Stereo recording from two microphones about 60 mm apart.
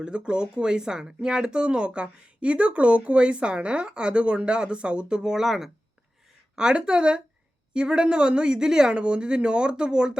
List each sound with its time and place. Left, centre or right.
0.0 s speech: centre